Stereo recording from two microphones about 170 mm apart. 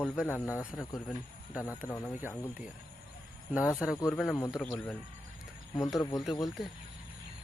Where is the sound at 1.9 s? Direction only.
10° left (ahead or behind).